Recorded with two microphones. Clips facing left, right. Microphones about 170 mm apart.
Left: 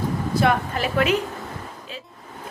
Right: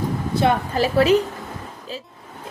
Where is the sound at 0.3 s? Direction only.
30° right (ahead or behind).